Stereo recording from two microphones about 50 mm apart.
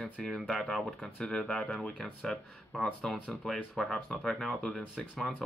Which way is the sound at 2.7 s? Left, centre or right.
Centre.